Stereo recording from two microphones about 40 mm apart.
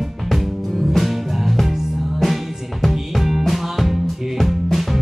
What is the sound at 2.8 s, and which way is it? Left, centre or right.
Music, centre.